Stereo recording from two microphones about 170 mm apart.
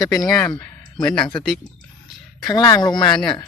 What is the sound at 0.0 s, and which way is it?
Speech, 20° left (ahead or behind).